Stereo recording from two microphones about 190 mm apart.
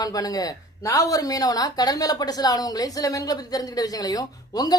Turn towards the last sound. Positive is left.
turn(degrees=20)  # may be behind; listen again after turning